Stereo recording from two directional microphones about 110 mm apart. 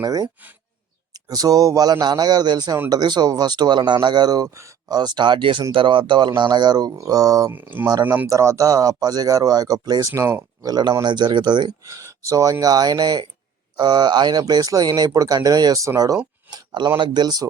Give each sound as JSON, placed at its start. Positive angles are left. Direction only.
{"t": 0.0, "sound": "speech", "side_deg": -35}
{"t": 4.9, "sound": "speech", "side_deg": -40}
{"t": 7.5, "sound": "speech", "side_deg": -20}
{"t": 8.3, "sound": "speech", "side_deg": -30}
{"t": 10.7, "sound": "speech", "side_deg": -40}
{"t": 11.9, "sound": "speech", "side_deg": -30}